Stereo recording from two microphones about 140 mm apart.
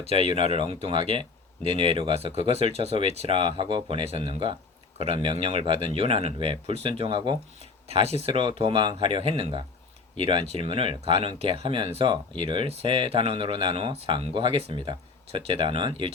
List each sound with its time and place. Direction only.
0.0 s speech: 45° right (ahead or behind)